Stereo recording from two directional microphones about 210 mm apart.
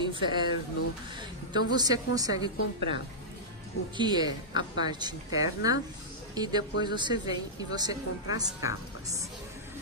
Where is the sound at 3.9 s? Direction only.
20° right (ahead or behind).